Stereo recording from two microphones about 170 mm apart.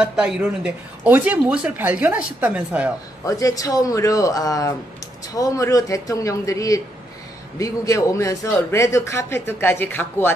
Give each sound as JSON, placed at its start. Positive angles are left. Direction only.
{"t": 0.0, "sound": "speech", "side_deg": -5}
{"t": 3.3, "sound": "a man's voice", "side_deg": 20}